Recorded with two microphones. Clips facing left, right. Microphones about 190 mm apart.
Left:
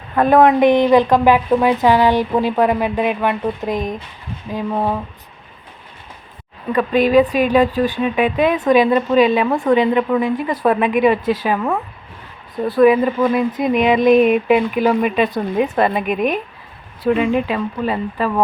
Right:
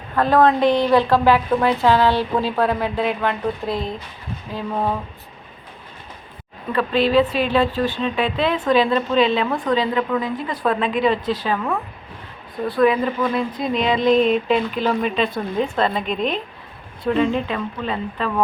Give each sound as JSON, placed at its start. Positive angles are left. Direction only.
{"t": 0.2, "sound": "a woman's voice", "side_deg": 20}
{"t": 6.7, "sound": "a woman's voice", "side_deg": 15}
{"t": 9.6, "sound": "a woman's voice", "side_deg": 25}
{"t": 10.2, "sound": "a woman's voice", "side_deg": 10}
{"t": 12.8, "sound": "a woman's voice", "side_deg": 15}